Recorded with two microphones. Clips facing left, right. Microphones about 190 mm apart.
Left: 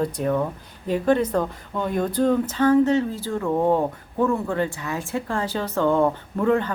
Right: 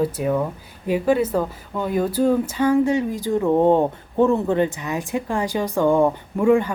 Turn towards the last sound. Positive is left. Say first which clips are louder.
# right 4 dB
turn(degrees=-10)  # may be behind; listen again after turning